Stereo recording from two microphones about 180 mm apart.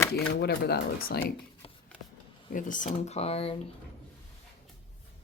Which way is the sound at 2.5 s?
45° left (ahead or behind).